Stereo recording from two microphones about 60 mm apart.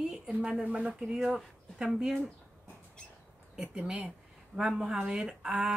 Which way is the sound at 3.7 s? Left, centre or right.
Centre.